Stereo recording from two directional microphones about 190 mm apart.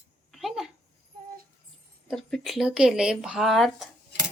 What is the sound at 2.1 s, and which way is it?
Speech, centre (ahead or behind).